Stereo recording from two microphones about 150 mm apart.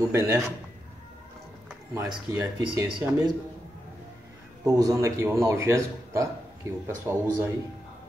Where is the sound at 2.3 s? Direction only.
20° right (ahead or behind).